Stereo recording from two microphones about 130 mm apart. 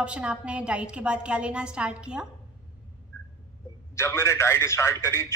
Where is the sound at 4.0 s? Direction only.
20° left (ahead or behind).